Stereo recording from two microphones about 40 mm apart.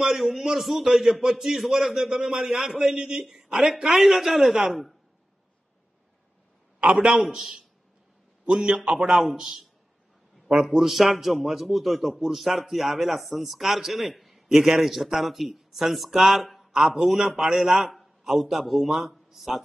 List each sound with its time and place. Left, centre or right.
0.1 s a man's voice: centre
6.8 s a man's voice: right
7.3 s a man's voice: centre
8.5 s a man's voice: centre
8.9 s speech: centre
10.5 s a man's voice: right
10.8 s a man's voice: centre